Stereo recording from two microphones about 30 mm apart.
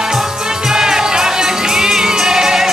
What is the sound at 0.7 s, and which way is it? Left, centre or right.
Music, centre.